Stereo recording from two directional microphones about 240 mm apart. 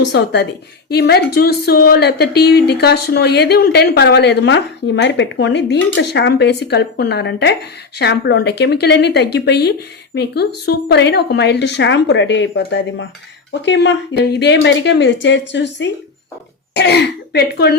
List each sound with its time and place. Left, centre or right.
0.0 s speech: left